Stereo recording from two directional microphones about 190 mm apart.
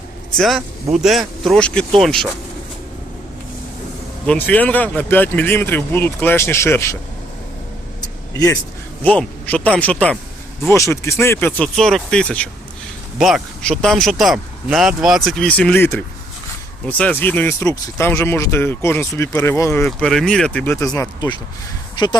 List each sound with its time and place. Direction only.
0.3 s speech: centre (ahead or behind)
4.3 s speech: 10° left (ahead or behind)
8.0 s vehicle: 15° left (ahead or behind)
9.0 s speech: 5° left (ahead or behind)
19.8 s speech: centre (ahead or behind); by 22.2 s 20° left (ahead or behind)